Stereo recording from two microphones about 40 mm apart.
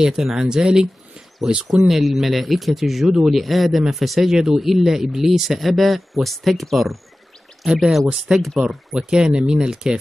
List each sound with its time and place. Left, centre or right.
0.0 s speech: centre
1.9 s speech: centre
4.3 s speech: centre
8.4 s speech: centre
8.6 s speech: centre